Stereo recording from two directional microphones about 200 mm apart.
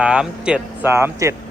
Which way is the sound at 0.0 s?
5° right (ahead or behind).